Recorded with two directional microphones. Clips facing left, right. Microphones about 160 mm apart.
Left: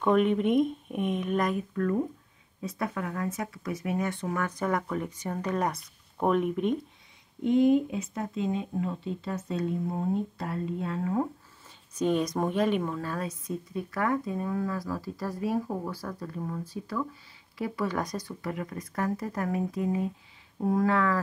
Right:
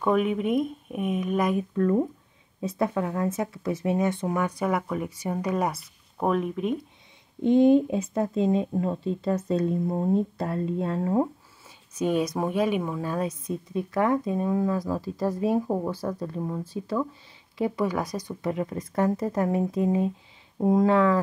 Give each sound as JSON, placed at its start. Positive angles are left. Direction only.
{"t": 0.0, "sound": "speech", "side_deg": -5}
{"t": 2.6, "sound": "speech", "side_deg": -25}
{"t": 7.4, "sound": "speech", "side_deg": -30}
{"t": 12.0, "sound": "a woman's voice", "side_deg": -10}
{"t": 17.9, "sound": "a woman's voice", "side_deg": -10}